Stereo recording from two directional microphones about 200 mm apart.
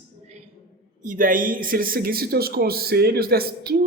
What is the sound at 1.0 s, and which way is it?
Speech, 45° right (ahead or behind).